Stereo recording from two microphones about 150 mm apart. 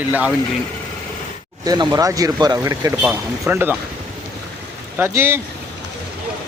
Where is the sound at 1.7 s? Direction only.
25° right (ahead or behind).